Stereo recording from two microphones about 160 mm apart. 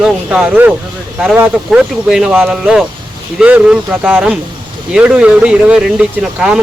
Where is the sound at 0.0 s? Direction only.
5° right (ahead or behind).